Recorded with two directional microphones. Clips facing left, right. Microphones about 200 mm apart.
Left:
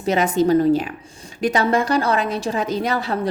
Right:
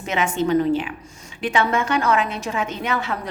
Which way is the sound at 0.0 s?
35° left (ahead or behind).